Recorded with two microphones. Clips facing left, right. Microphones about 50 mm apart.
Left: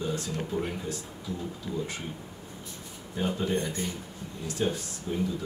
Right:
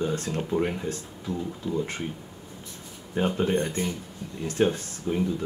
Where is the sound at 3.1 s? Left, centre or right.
Right.